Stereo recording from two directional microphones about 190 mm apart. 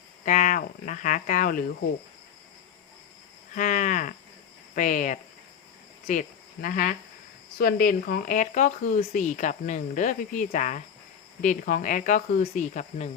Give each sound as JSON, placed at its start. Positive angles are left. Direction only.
{"t": 0.3, "sound": "speech", "side_deg": 40}
{"t": 3.5, "sound": "speech", "side_deg": 45}